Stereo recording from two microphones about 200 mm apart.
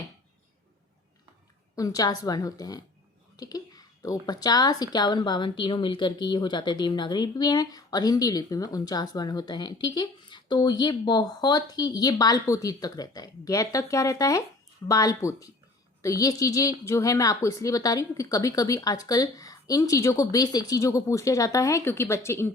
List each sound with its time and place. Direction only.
1.7 s a woman's voice: 15° left (ahead or behind)